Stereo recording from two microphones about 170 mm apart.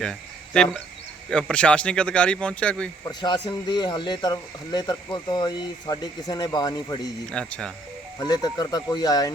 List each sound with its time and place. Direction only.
0.0 s speech: 5° left (ahead or behind)
3.1 s speech: 25° left (ahead or behind)
7.3 s speech: 5° left (ahead or behind)
8.2 s speech: 25° left (ahead or behind)